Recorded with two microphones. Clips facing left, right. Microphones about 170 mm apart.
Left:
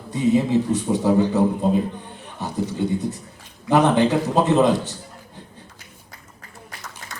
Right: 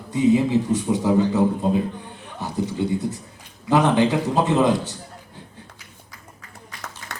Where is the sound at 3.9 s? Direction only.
15° right (ahead or behind).